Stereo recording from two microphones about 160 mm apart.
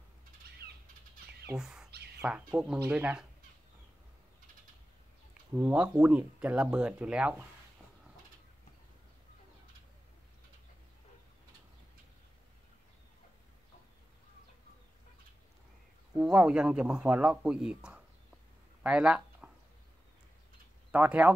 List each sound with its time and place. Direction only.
0.6 s bird flight: 80° right
1.6 s bird: 5° right (ahead or behind)
2.2 s speech: 5° right (ahead or behind)
5.5 s speech: 10° right (ahead or behind)
16.2 s speech: 5° right (ahead or behind)
18.8 s a sound: 5° right (ahead or behind)
20.9 s speech: 10° right (ahead or behind)